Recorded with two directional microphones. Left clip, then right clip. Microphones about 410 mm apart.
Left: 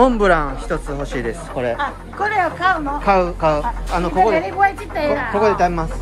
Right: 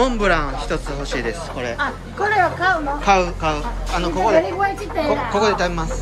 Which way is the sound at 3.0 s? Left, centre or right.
Centre.